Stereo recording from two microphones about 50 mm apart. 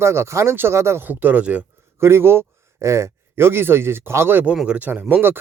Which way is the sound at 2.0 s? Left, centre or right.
Right.